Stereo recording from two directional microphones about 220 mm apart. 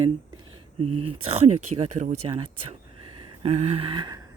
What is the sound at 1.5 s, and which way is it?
Speech, 90° right.